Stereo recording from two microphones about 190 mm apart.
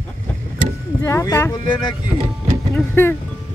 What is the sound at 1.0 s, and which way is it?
Speech, 15° left (ahead or behind).